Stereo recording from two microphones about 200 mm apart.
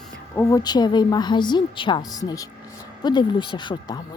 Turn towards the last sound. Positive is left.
turn(degrees=20)  # may be behind; listen again after turning